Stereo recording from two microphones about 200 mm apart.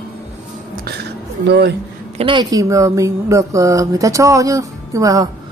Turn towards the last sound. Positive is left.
turn(degrees=-15)  # may be behind; listen again after turning